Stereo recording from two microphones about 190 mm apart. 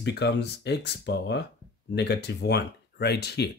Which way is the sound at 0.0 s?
60° left (ahead or behind).